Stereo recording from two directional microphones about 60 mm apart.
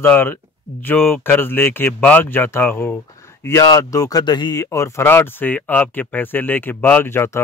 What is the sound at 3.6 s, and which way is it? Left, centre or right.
Speech, left.